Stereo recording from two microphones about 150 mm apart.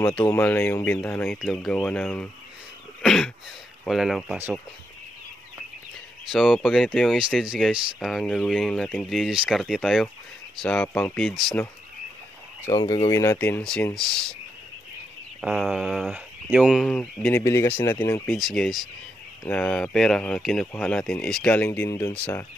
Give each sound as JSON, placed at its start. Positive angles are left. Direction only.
{"t": 0.0, "sound": "speech", "side_deg": 15}
{"t": 1.4, "sound": "speech", "side_deg": 0}
{"t": 3.0, "sound": "throat clearing", "side_deg": 5}
{"t": 3.8, "sound": "speech", "side_deg": 0}
{"t": 6.3, "sound": "speech", "side_deg": 0}
{"t": 9.1, "sound": "speech", "side_deg": -5}
{"t": 12.6, "sound": "speech", "side_deg": 25}
{"t": 13.4, "sound": "speech", "side_deg": 10}
{"t": 15.4, "sound": "speech", "side_deg": -5}
{"t": 16.8, "sound": "speech", "side_deg": 5}
{"t": 17.4, "sound": "speech", "side_deg": 20}
{"t": 18.3, "sound": "speech", "side_deg": 5}